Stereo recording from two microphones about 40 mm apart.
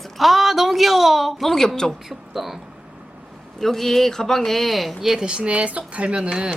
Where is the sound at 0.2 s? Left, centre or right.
Centre.